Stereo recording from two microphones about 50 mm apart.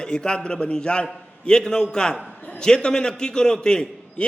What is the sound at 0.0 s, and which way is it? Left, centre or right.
A man's voice, centre.